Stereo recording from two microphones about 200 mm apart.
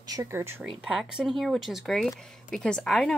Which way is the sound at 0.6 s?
Centre (ahead or behind).